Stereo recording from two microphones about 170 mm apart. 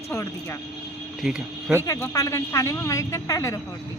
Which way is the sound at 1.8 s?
20° left (ahead or behind).